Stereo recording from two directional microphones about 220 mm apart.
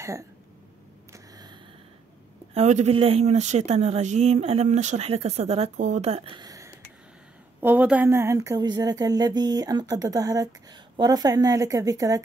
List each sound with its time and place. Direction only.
0.0 s speech: 15° right (ahead or behind)
1.1 s a sound: 20° right (ahead or behind)
2.5 s a woman's voice: 30° right (ahead or behind); by 12.2 s 15° right (ahead or behind)